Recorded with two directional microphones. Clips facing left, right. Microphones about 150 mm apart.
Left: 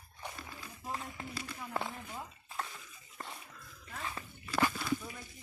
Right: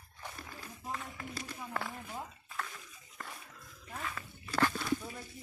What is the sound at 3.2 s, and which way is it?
Dog, 25° left (ahead or behind).